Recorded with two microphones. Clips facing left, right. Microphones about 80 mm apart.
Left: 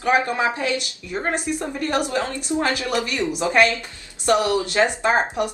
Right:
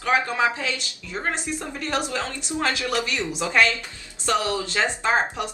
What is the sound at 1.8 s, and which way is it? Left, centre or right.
Speech, left.